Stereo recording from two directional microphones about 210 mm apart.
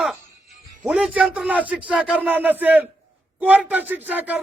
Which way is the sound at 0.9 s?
5° right (ahead or behind).